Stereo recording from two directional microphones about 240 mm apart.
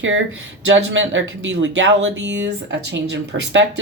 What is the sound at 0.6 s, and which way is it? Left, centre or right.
A woman's voice, right.